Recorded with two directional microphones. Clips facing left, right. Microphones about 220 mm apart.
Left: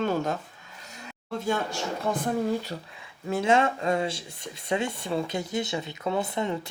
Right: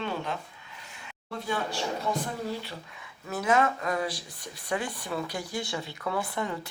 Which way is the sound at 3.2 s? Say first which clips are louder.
Left 3 dB; 25° left (ahead or behind).